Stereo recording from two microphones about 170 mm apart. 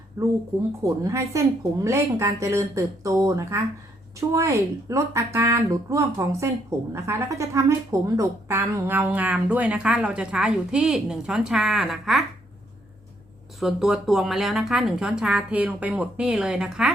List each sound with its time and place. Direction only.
0.2 s speech: 15° right (ahead or behind); by 12.2 s centre (ahead or behind)
13.6 s speech: centre (ahead or behind)